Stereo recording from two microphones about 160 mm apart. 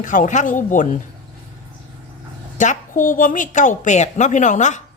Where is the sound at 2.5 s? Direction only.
55° left (ahead or behind).